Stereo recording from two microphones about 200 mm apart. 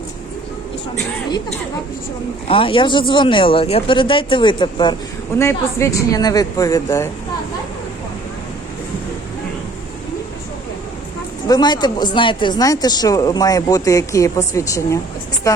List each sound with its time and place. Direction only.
2.5 s speech: 25° left (ahead or behind)
11.4 s speech: 20° left (ahead or behind)